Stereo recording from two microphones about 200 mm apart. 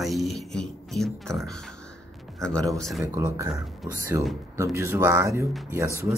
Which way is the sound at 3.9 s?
15° right (ahead or behind).